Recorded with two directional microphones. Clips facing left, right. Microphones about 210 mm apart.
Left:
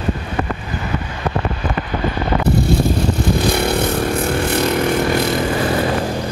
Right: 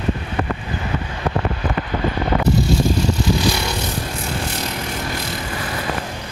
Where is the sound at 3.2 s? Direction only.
55° left (ahead or behind).